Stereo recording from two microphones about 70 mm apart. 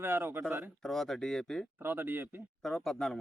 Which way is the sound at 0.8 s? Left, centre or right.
Centre.